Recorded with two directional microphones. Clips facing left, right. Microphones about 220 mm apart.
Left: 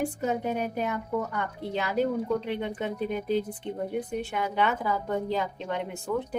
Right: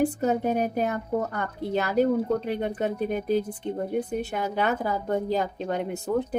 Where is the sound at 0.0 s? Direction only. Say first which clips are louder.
Right 5 dB; 40° right (ahead or behind).